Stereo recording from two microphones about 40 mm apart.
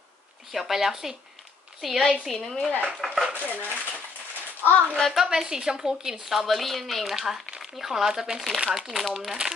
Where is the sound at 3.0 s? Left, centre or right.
Centre.